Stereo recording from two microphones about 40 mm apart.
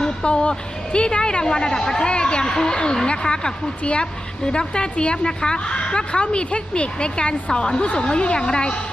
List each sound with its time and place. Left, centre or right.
0.0 s music: left
0.9 s a woman's voice: left